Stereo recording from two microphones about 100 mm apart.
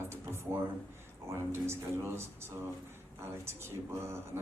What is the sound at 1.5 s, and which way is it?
A woman's voice, 25° right (ahead or behind).